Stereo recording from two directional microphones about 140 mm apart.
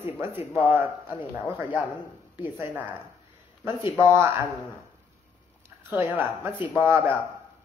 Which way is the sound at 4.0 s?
20° right (ahead or behind).